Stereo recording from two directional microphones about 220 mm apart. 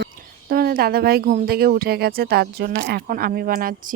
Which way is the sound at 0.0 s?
45° right (ahead or behind).